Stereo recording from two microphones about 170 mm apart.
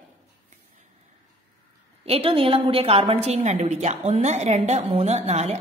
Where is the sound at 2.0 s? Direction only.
35° right (ahead or behind).